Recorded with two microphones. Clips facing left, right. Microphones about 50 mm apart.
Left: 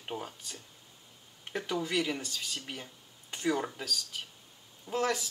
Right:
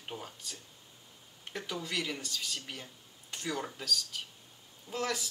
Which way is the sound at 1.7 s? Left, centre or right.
Centre.